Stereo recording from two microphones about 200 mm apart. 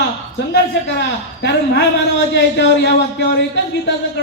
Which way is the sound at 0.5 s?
60° left (ahead or behind).